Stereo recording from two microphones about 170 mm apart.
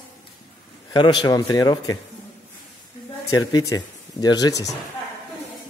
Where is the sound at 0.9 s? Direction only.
25° left (ahead or behind).